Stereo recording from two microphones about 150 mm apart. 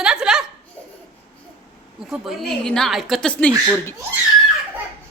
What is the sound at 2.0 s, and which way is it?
A woman's voice, centre (ahead or behind).